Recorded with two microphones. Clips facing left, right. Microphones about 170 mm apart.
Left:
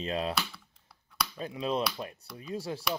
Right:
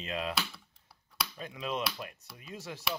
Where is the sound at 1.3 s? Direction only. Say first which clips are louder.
Left 5 dB; 35° left (ahead or behind).